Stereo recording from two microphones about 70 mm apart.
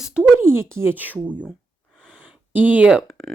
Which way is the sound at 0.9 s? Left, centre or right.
Right.